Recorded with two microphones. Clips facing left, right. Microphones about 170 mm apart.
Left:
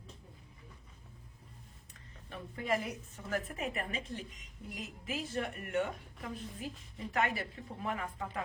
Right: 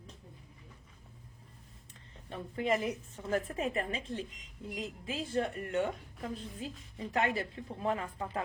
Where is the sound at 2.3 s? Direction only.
25° right (ahead or behind).